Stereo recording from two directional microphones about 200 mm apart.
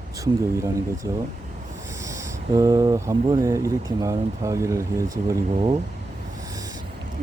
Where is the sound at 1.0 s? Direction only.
15° right (ahead or behind).